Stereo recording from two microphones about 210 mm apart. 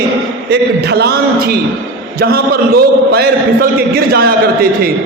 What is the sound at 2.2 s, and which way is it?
A man's voice, 45° right (ahead or behind).